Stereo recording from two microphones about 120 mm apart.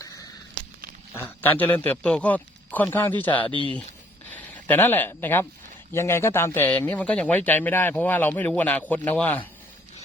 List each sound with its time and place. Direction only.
1.1 s a man's voice: 20° left (ahead or behind)
4.3 s a man's voice: 15° left (ahead or behind)